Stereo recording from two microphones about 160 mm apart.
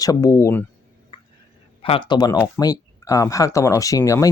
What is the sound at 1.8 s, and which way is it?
Speech, 30° left (ahead or behind).